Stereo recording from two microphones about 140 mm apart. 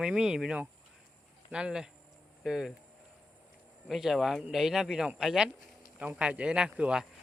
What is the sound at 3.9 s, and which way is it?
Speech, centre (ahead or behind).